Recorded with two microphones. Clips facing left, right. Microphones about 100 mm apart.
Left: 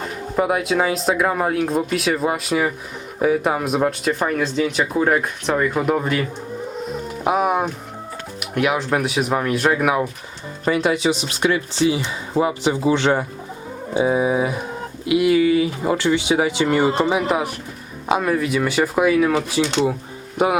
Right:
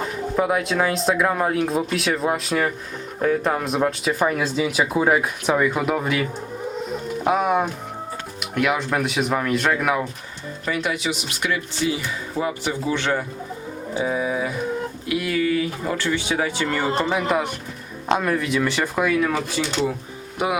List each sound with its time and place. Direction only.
0.3 s speech: 5° left (ahead or behind)
7.3 s speech: 5° left (ahead or behind)
10.7 s speech: 30° left (ahead or behind); by 19.3 s 5° left (ahead or behind)